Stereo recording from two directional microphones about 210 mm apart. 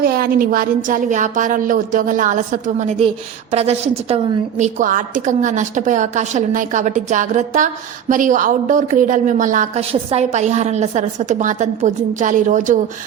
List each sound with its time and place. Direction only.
0.0 s a woman's voice: 45° right (ahead or behind)